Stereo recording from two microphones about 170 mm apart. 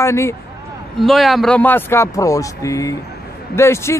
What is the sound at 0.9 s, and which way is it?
A man's voice, centre (ahead or behind).